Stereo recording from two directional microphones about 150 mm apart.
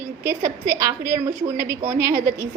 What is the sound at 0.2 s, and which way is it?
A woman's voice, 15° right (ahead or behind).